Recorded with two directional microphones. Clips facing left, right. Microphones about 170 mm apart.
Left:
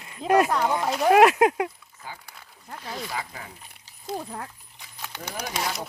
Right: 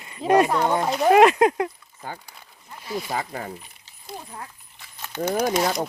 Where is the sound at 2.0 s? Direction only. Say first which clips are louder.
Right 5 dB; 50° right (ahead or behind).